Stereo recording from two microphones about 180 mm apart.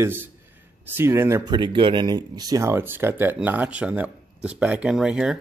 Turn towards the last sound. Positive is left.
turn(degrees=-5)  # may be behind; listen again after turning